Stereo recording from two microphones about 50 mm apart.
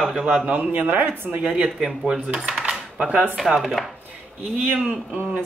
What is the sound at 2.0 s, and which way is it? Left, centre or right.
Cutlery, centre.